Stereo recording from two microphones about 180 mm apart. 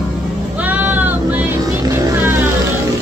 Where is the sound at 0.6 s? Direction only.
10° right (ahead or behind).